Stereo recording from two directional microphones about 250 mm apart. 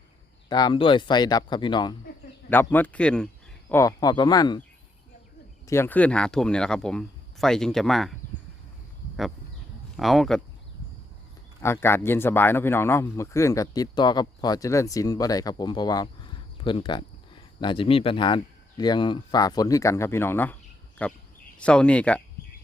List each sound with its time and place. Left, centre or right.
0.4 s speech: centre
5.6 s speech: centre
10.0 s speech: centre
11.6 s speech: centre